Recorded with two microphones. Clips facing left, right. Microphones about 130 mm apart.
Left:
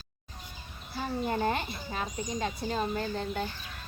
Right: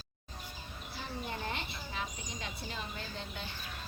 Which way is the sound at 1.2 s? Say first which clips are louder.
Left 11 dB; 45° left (ahead or behind).